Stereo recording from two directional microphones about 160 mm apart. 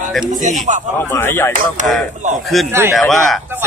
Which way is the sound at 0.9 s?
15° left (ahead or behind).